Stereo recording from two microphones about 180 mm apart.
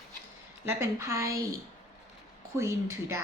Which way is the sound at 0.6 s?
15° right (ahead or behind).